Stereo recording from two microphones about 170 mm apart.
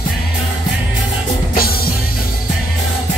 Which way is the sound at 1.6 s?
60° left (ahead or behind).